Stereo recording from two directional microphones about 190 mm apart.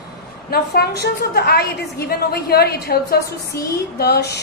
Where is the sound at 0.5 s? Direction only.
60° left (ahead or behind).